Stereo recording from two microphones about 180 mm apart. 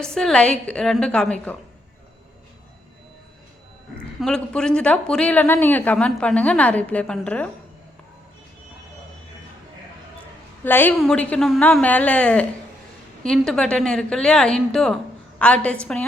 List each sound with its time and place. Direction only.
0.0 s a woman's voice: 5° left (ahead or behind)
4.2 s speech: 5° left (ahead or behind)
10.6 s a woman's voice: 10° left (ahead or behind)